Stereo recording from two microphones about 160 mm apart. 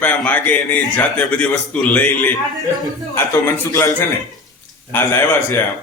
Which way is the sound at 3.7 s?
20° left (ahead or behind).